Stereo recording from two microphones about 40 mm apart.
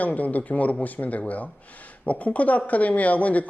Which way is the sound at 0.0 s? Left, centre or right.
Left.